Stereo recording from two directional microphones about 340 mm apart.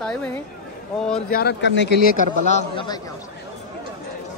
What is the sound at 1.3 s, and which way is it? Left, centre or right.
Speech, left.